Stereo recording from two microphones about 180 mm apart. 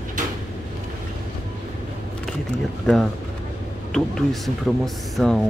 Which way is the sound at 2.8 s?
Centre (ahead or behind).